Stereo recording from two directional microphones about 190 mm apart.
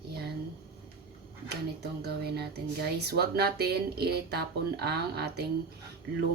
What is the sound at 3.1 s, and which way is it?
A woman's voice, 60° right (ahead or behind).